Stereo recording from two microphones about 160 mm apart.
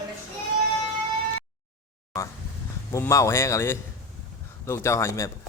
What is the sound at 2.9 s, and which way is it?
Speech, 20° left (ahead or behind).